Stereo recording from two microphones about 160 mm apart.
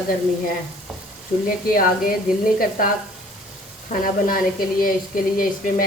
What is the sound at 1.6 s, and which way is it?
Speech, 65° left (ahead or behind).